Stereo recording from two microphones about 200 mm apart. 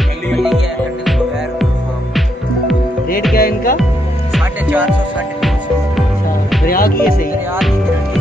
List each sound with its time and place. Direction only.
0.3 s music: centre (ahead or behind)
3.3 s music: 45° left (ahead or behind)
4.3 s music: 10° right (ahead or behind)
6.6 s music: 45° left (ahead or behind)